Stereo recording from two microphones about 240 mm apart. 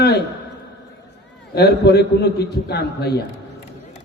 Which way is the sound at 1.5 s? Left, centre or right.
Left.